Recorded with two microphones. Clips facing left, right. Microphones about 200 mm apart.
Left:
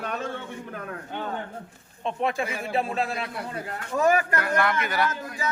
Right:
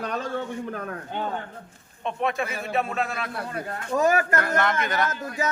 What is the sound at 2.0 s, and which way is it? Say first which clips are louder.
A man's voice: even; 30° left (ahead or behind).